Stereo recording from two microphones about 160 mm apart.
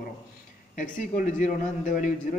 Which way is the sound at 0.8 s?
55° left (ahead or behind).